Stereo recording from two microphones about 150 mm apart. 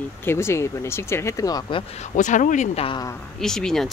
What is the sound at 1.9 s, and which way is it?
Speech, 50° left (ahead or behind).